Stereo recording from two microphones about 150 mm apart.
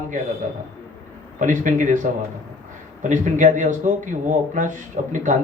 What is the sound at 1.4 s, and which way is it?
A man's voice, 60° right (ahead or behind).